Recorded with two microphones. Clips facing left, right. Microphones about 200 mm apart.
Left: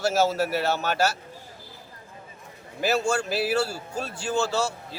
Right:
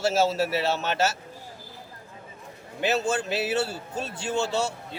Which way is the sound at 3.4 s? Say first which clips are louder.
Left 2 dB; 25° right (ahead or behind).